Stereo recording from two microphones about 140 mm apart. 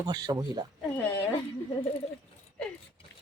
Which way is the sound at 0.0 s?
30° right (ahead or behind).